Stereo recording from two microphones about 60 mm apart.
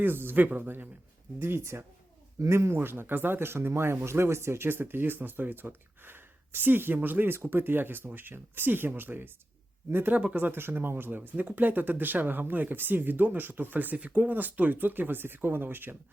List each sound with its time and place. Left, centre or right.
0.0 s speech: right
1.4 s speech: right
10.1 s speech: right
10.3 s speech: right